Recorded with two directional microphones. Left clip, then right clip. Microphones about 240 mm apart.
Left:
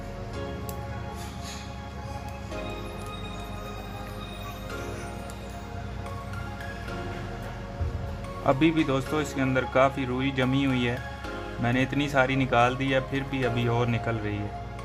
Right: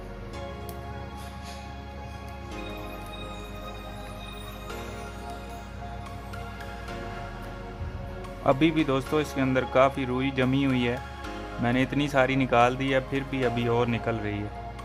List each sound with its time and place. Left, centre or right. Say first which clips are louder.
8.4 s speech: even; centre